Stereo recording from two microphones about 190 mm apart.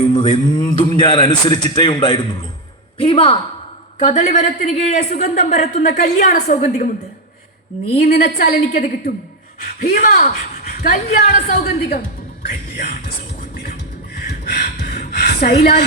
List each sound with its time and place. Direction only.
0.1 s a man's voice: 25° left (ahead or behind)
3.9 s a man's voice: 40° left (ahead or behind)
8.0 s a woman's voice: 50° left (ahead or behind)
12.4 s speech: 50° left (ahead or behind)
14.3 s speech: 55° left (ahead or behind)